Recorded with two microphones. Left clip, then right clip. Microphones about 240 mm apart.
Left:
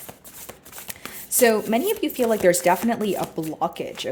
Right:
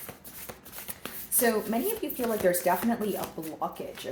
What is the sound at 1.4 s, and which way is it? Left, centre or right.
Speech, left.